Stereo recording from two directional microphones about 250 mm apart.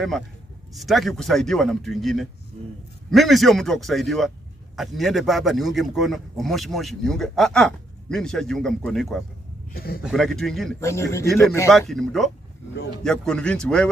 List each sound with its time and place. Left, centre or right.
0.7 s a man's voice: centre
9.7 s a man's voice: left
10.0 s a man's voice: centre
11.2 s a man's voice: centre